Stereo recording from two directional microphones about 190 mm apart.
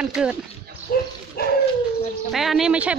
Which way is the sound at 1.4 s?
55° left (ahead or behind).